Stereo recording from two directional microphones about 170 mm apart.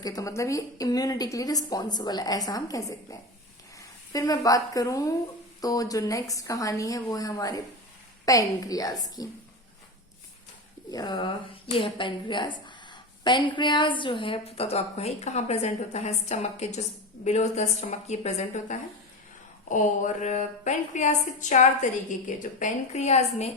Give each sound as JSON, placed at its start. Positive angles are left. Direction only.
{"t": 0.0, "sound": "a woman's voice", "side_deg": 20}
{"t": 10.9, "sound": "a woman's voice", "side_deg": 25}